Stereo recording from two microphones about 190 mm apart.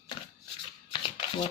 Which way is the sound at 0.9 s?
25° left (ahead or behind).